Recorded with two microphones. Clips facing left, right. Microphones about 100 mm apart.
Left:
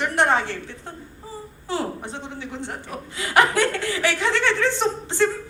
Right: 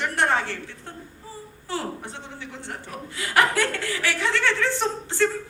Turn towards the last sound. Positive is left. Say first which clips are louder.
# left 2 dB
turn(degrees=20)  # may be behind; listen again after turning